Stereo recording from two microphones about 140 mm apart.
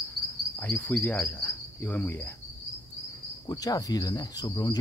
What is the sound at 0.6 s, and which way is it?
Cricket, 15° left (ahead or behind).